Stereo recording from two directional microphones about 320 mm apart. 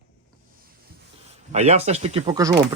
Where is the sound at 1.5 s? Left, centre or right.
Centre.